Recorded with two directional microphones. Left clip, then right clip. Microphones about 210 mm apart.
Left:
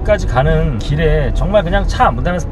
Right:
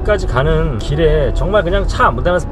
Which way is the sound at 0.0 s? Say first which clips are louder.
Left 1 dB; 15° right (ahead or behind).